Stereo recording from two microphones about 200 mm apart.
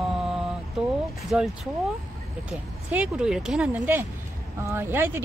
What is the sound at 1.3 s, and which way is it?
Speech, centre (ahead or behind).